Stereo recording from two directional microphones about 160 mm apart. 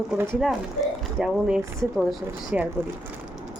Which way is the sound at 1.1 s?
Centre (ahead or behind).